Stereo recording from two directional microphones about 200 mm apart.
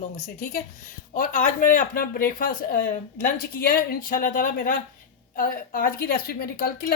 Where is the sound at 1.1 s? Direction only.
40° left (ahead or behind).